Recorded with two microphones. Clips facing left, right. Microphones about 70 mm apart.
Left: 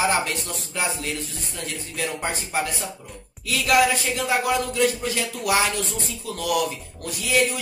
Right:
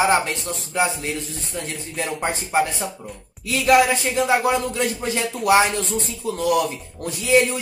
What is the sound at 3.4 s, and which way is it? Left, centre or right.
Speech, right.